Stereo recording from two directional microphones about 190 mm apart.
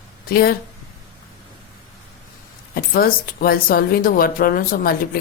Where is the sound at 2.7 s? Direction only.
50° left (ahead or behind).